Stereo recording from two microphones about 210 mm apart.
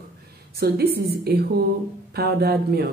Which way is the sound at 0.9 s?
50° right (ahead or behind).